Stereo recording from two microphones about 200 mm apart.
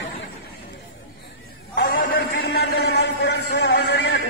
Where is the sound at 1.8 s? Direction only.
45° left (ahead or behind).